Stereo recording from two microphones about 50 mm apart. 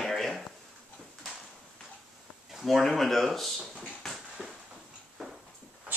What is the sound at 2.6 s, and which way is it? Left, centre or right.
Speech, centre.